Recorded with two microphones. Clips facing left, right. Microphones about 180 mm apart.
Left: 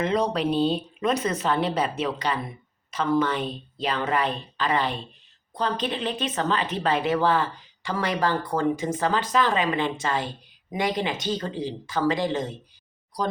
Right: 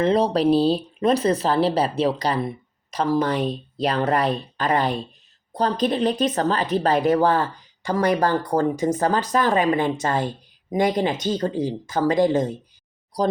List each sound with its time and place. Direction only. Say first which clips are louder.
0.0 s speech: right 5 dB; 30° right (ahead or behind)